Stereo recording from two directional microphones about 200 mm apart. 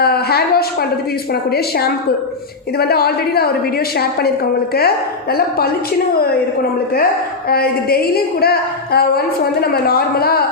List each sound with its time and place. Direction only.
0.0 s a sound: 50° left (ahead or behind)
1.3 s a woman's voice: 50° left (ahead or behind)
6.9 s a woman's voice: 50° left (ahead or behind)